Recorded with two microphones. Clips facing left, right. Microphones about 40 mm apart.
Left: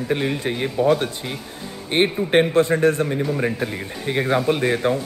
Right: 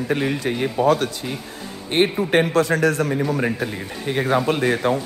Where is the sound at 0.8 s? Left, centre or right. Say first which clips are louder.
Even; left.